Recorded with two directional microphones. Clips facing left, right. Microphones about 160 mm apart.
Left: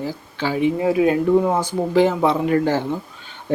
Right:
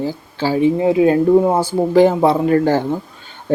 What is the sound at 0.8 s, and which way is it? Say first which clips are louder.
Speech: right 4 dB; 25° right (ahead or behind).